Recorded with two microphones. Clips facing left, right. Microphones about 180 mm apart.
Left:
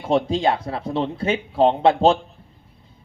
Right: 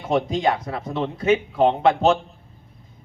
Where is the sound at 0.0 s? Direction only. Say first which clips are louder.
Left 1 dB; 30° left (ahead or behind).